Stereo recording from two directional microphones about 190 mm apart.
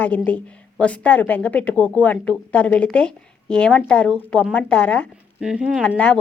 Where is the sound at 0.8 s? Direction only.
5° left (ahead or behind).